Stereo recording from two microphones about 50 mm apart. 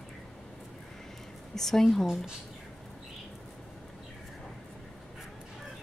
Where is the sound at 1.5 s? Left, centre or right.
Centre.